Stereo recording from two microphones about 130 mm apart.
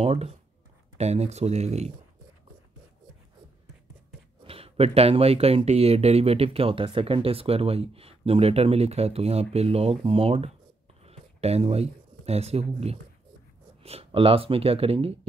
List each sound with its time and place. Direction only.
0.0 s speech: 50° right (ahead or behind)
4.5 s speech: 50° right (ahead or behind)